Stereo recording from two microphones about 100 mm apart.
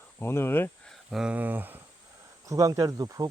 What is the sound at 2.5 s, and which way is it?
Speech, 35° right (ahead or behind).